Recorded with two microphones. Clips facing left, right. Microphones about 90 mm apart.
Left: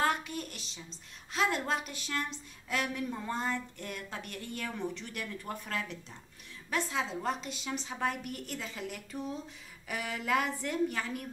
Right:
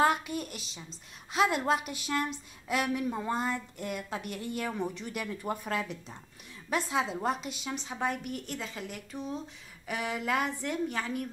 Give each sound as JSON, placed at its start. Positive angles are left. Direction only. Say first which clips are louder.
{"t": 0.0, "sound": "a woman's voice", "louder": "right 4 dB", "side_deg": -10}